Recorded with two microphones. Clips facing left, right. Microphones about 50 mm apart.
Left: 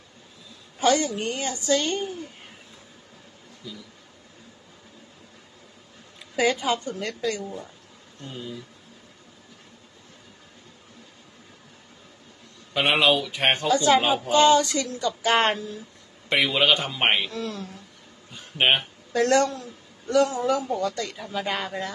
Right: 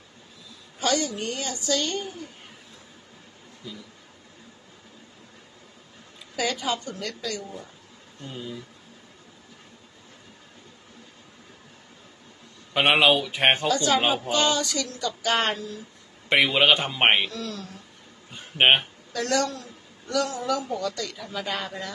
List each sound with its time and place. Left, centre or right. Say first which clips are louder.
0.7 s speech: left 4 dB; left
3.6 s a man's voice: even; centre
6.3 s speech: left 4 dB; left
8.2 s speech: even; centre
12.8 s a man's voice: right 1 dB; centre
13.7 s speech: left 3 dB; left
16.3 s a man's voice: right 1 dB; centre
17.3 s speech: left 2 dB; left
18.3 s a sound: right 2 dB; centre
19.1 s a man's voice: left 5 dB; left; by 21.8 s centre